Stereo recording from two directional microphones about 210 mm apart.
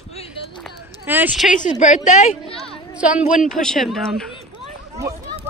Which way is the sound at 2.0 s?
35° left (ahead or behind).